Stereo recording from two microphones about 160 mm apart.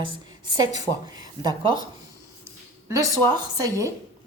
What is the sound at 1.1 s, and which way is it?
Speech, 25° right (ahead or behind).